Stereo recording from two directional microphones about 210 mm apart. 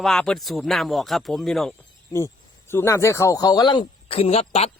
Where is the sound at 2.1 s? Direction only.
10° left (ahead or behind).